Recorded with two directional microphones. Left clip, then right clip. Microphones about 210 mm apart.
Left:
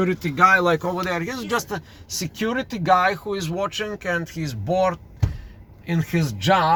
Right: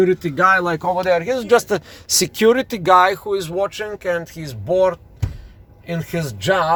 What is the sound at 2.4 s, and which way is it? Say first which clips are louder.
A man's voice: right 6 dB; 30° right (ahead or behind).